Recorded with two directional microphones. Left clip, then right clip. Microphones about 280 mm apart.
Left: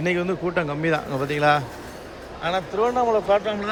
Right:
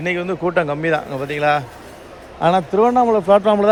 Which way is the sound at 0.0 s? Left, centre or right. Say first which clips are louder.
Right 3 dB; centre.